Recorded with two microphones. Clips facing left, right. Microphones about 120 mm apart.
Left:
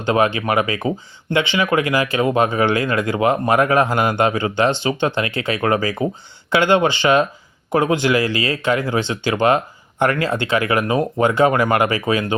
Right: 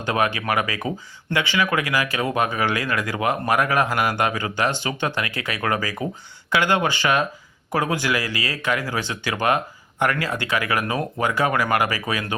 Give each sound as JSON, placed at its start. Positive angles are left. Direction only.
{"t": 0.0, "sound": "speech", "side_deg": 25}